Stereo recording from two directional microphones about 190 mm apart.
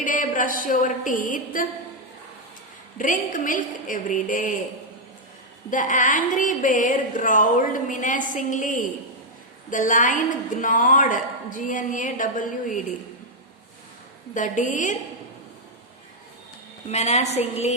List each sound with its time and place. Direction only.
0.0 s a woman's voice: 45° left (ahead or behind)
3.0 s a woman's voice: 45° left (ahead or behind)
5.7 s a woman's voice: 40° left (ahead or behind)
14.3 s a woman's voice: 40° left (ahead or behind)
16.9 s a woman's voice: 35° left (ahead or behind)